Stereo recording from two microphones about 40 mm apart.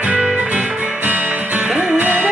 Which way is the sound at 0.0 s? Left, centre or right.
Right.